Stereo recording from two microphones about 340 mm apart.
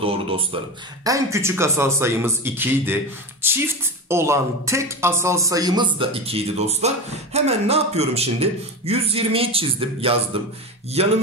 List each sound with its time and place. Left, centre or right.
0.0 s a woman's voice: centre